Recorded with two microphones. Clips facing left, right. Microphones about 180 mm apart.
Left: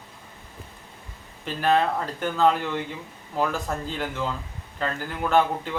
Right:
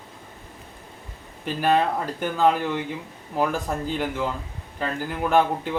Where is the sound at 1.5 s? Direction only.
10° right (ahead or behind).